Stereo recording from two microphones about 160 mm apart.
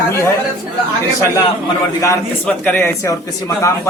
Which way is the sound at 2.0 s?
20° left (ahead or behind).